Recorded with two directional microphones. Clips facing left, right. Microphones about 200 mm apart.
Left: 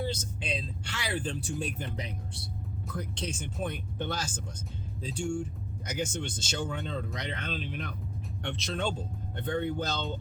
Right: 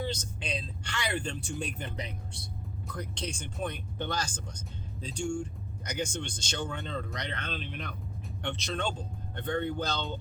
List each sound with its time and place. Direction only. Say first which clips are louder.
0.1 s speech: left 1 dB; 5° left (ahead or behind)